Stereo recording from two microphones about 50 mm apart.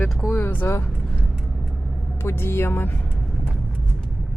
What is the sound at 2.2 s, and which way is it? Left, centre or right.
Speech, left.